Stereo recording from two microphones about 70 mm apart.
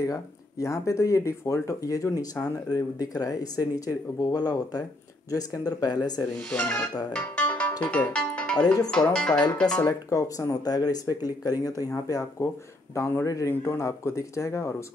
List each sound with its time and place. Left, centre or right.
0.0 s speech: left
2.4 s speech: left
6.5 s speech: left
7.1 s music: centre
7.8 s speech: centre
8.6 s speech: left
8.9 s speech: centre
9.8 s speech: left